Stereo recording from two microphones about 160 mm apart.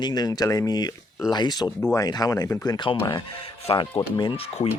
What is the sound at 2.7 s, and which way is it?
Speech, 30° left (ahead or behind).